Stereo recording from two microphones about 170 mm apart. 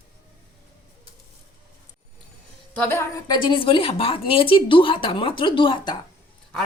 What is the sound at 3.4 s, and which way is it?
Speech, 30° left (ahead or behind).